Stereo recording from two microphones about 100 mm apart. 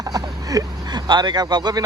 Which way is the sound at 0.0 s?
35° right (ahead or behind).